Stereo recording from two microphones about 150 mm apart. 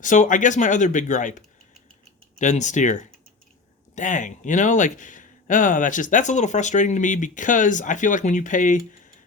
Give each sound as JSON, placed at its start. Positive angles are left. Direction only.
{"t": 0.0, "sound": "speech", "side_deg": 55}